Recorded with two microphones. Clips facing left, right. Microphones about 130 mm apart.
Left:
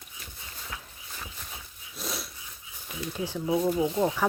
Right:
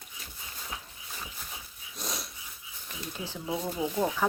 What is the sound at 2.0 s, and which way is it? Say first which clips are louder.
Dog: left 2 dB; centre (ahead or behind).